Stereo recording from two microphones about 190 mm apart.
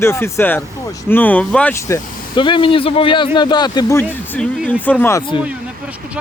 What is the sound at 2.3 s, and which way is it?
Speech, 25° left (ahead or behind).